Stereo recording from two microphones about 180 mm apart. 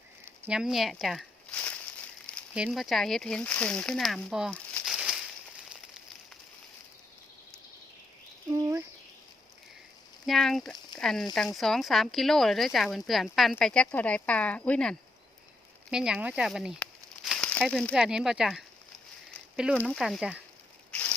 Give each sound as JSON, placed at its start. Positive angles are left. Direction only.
{"t": 0.4, "sound": "speech", "side_deg": -5}
{"t": 2.3, "sound": "a sound", "side_deg": 5}
{"t": 2.6, "sound": "speech", "side_deg": 0}
{"t": 8.4, "sound": "a sound", "side_deg": -15}
{"t": 10.2, "sound": "speech", "side_deg": 0}
{"t": 19.7, "sound": "speech", "side_deg": 5}